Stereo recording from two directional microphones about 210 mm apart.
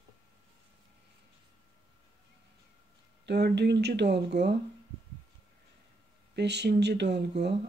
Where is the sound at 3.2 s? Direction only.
50° right (ahead or behind).